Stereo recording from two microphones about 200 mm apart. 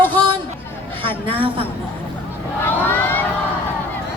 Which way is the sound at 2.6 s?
10° left (ahead or behind).